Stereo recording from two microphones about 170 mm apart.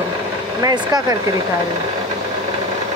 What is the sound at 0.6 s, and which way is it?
Speech, 20° right (ahead or behind).